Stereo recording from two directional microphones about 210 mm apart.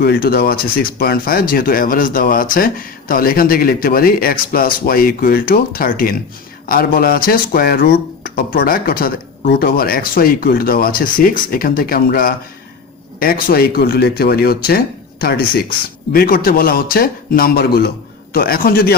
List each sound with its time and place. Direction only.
0.0 s speech: 45° left (ahead or behind)